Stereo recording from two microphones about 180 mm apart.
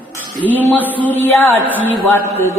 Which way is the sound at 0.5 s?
10° right (ahead or behind).